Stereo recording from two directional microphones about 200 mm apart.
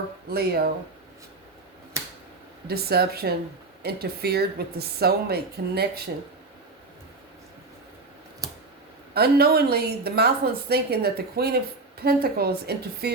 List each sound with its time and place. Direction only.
0.3 s a woman's voice: 50° right (ahead or behind)
2.6 s a woman's voice: 50° right (ahead or behind)
8.4 s a sound: 15° right (ahead or behind)
9.1 s a woman's voice: 50° right (ahead or behind)